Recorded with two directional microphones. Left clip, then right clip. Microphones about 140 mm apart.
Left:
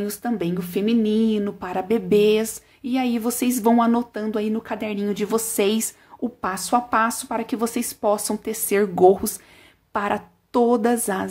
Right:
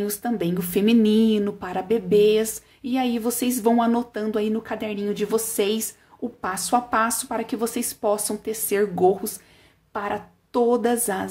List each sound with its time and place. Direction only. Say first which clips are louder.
0.0 s a woman's voice: even; 10° left (ahead or behind)